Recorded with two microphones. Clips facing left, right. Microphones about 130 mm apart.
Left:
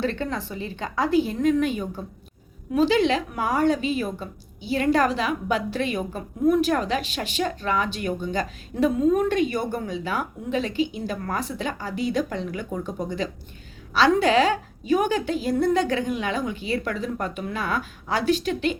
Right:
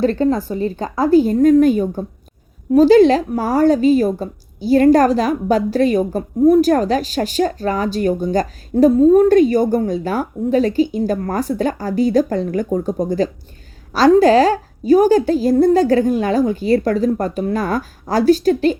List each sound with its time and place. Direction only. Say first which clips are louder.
0.0 s a woman's voice: right 11 dB; 40° right (ahead or behind)